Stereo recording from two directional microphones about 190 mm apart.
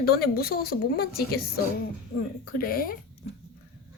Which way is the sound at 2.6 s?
50° left (ahead or behind).